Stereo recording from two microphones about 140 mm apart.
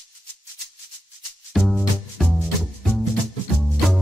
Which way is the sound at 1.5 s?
Centre (ahead or behind).